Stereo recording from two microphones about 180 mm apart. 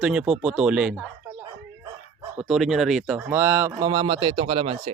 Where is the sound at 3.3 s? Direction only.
15° right (ahead or behind).